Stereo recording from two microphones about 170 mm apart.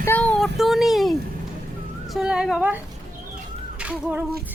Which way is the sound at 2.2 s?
5° right (ahead or behind).